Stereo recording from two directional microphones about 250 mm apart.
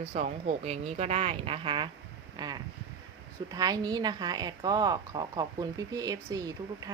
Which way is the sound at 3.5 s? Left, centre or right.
Centre.